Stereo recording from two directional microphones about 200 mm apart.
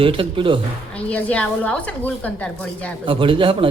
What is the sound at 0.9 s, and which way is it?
A woman's voice, 5° left (ahead or behind).